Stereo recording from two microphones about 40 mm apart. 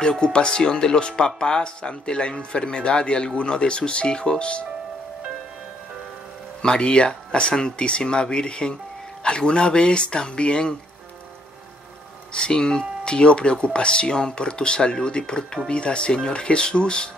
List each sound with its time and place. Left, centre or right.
0.0 s speech: left
6.6 s speech: left
12.4 s speech: left